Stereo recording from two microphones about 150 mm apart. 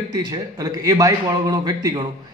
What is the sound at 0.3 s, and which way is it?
Speech, 25° right (ahead or behind).